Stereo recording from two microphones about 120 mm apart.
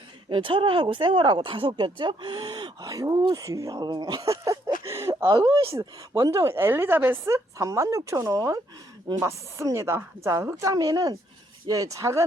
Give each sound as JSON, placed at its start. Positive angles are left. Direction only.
{"t": 0.3, "sound": "speech", "side_deg": -45}
{"t": 4.8, "sound": "a sound", "side_deg": -25}
{"t": 5.3, "sound": "speech", "side_deg": -30}